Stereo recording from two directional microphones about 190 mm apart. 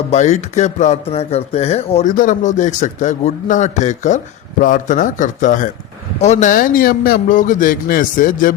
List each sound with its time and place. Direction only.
0.1 s a man's voice: 40° left (ahead or behind)